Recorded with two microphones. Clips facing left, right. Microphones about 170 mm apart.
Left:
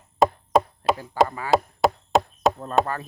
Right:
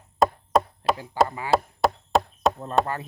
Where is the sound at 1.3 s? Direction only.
20° right (ahead or behind).